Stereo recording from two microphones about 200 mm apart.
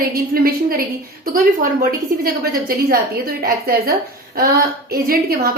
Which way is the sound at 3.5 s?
50° right (ahead or behind).